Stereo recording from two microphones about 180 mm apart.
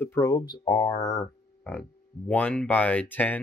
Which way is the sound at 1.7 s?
5° left (ahead or behind).